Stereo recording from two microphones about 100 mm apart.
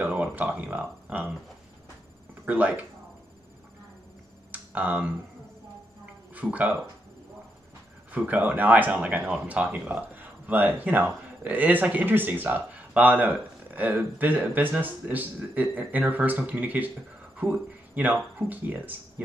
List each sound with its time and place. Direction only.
0.0 s speech: 15° right (ahead or behind)
2.4 s speech: 15° right (ahead or behind)
4.5 s computer keyboard: 15° right (ahead or behind)
6.3 s speech: 15° right (ahead or behind)
8.1 s speech: 15° right (ahead or behind)